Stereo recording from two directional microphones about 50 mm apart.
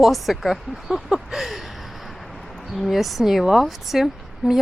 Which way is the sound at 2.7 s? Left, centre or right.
Centre.